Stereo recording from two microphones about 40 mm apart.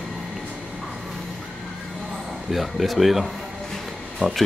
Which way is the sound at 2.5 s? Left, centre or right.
Centre.